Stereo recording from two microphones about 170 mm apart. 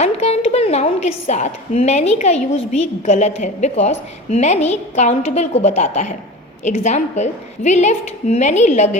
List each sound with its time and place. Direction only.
0.0 s a woman's voice: 40° left (ahead or behind)